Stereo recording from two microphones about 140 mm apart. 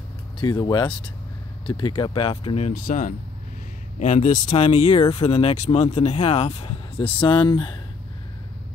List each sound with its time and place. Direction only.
0.4 s speech: 35° left (ahead or behind)
2.7 s speech: 70° left (ahead or behind); by 7.7 s 35° left (ahead or behind)